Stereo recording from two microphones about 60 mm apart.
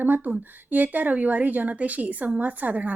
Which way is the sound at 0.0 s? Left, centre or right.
Right.